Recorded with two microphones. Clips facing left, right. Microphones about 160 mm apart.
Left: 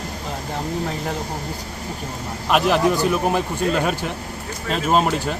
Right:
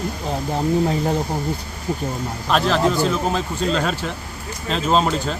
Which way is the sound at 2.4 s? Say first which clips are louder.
Left 1 dB; 15° left (ahead or behind).